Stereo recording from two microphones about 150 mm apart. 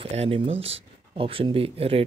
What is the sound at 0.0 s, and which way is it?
Speech, 40° right (ahead or behind).